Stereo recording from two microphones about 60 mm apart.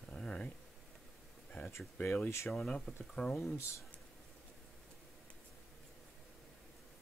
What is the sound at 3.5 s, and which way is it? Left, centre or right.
Speech, left.